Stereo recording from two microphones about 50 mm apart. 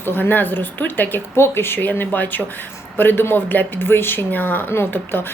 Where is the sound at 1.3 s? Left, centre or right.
Left.